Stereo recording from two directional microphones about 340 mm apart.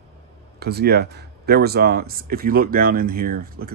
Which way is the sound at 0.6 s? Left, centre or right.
Right.